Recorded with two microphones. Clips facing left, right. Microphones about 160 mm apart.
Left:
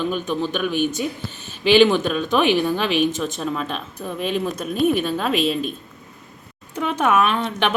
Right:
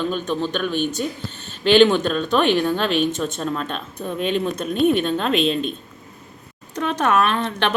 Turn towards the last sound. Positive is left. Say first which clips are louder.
# even
turn(degrees=10)  # may be behind; listen again after turning